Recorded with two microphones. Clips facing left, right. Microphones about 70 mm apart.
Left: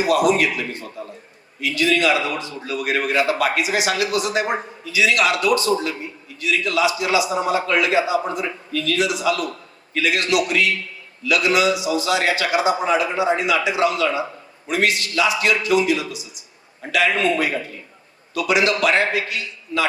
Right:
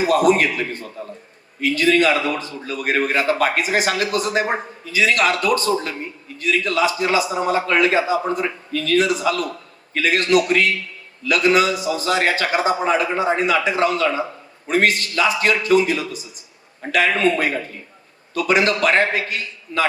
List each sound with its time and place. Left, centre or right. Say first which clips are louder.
0.1 s a man's voice: right 1 dB; right